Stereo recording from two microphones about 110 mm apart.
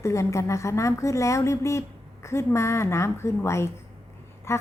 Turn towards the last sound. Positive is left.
turn(degrees=25)  # may be behind; listen again after turning